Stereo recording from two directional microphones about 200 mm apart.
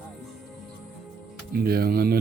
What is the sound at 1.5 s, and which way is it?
Speech, 50° right (ahead or behind).